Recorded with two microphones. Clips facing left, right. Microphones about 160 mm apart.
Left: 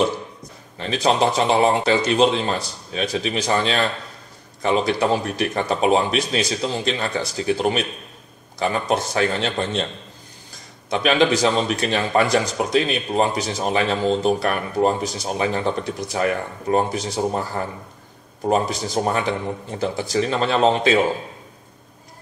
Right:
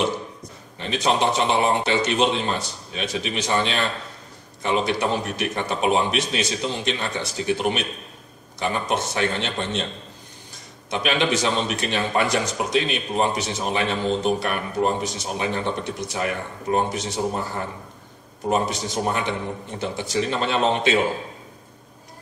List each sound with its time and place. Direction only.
0.7 s a man's voice: 35° left (ahead or behind)
10.9 s a man's voice: 35° left (ahead or behind)
18.5 s a man's voice: 35° left (ahead or behind)